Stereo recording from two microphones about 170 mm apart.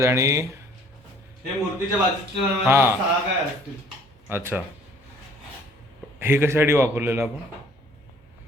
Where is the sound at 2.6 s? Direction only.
15° right (ahead or behind).